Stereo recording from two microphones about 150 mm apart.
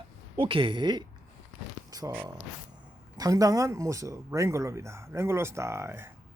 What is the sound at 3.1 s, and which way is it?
Speech, 25° right (ahead or behind).